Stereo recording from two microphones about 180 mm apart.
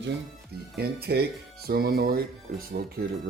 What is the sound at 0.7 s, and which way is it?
Speech, 60° right (ahead or behind).